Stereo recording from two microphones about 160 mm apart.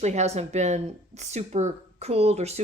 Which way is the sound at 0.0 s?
45° right (ahead or behind).